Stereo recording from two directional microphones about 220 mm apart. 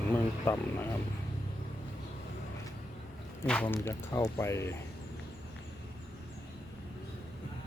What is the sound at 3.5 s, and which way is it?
Speech, 5° left (ahead or behind).